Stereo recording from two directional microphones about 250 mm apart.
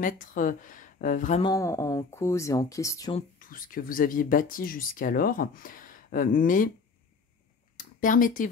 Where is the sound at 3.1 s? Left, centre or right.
Left.